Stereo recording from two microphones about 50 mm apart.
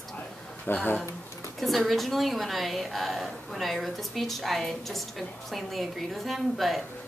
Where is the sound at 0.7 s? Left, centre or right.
Left.